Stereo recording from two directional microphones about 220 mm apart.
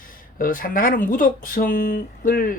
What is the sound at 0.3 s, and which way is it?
Speech, 40° left (ahead or behind).